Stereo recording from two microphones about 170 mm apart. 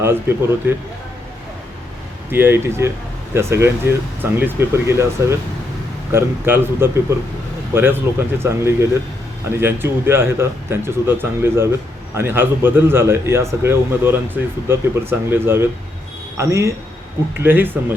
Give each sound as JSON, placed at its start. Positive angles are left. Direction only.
{"t": 0.0, "sound": "a man's voice", "side_deg": -15}
{"t": 2.3, "sound": "a man's voice", "side_deg": -15}